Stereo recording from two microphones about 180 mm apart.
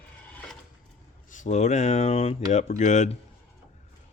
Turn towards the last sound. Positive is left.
turn(degrees=40)  # may be behind; listen again after turning